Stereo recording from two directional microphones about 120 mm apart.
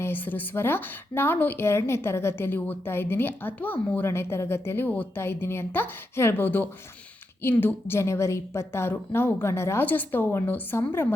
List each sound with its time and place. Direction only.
0.0 s a woman's voice: 15° left (ahead or behind)